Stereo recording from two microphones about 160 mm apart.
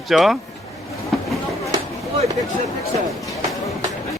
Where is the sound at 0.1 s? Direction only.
Centre (ahead or behind).